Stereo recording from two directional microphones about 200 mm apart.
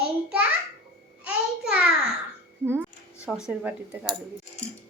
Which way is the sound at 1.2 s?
5° right (ahead or behind).